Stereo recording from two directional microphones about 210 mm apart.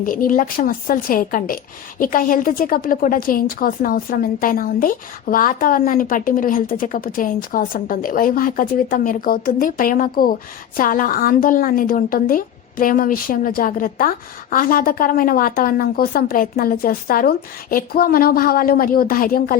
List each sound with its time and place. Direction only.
0.0 s a woman's voice: 40° left (ahead or behind)